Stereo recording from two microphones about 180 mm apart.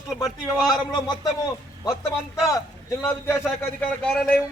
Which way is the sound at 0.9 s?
20° left (ahead or behind).